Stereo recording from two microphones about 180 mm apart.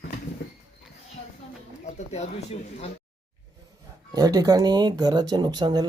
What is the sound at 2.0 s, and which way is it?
Speech, 40° left (ahead or behind).